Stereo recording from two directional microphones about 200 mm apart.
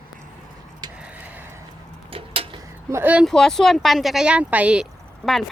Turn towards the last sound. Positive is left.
turn(degrees=5)  # may be behind; listen again after turning